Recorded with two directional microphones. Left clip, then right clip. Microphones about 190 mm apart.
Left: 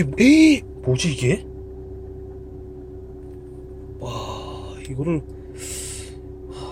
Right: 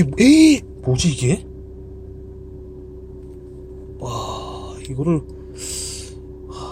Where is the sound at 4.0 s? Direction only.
20° right (ahead or behind).